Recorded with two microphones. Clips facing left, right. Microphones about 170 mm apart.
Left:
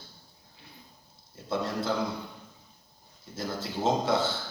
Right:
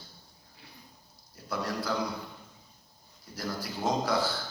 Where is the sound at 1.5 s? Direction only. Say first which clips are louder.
Left 3 dB; 25° left (ahead or behind).